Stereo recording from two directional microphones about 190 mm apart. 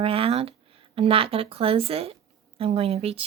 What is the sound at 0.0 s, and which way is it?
A woman's voice, 30° right (ahead or behind).